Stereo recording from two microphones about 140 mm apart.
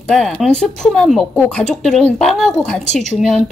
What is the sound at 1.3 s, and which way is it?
Speech, 15° left (ahead or behind).